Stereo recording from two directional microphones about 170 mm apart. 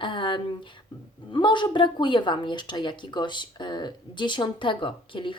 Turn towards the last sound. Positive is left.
turn(degrees=30)  # may be behind; listen again after turning